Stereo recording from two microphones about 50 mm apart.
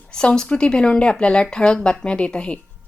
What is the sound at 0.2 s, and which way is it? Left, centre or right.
A woman's voice, left.